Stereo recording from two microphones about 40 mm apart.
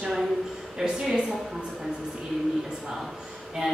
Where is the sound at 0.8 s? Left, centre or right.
Centre.